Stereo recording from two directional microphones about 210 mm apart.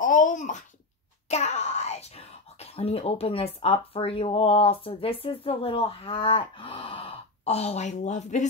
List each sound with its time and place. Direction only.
0.0 s wail: 40° left (ahead or behind)
1.3 s speech: 30° left (ahead or behind)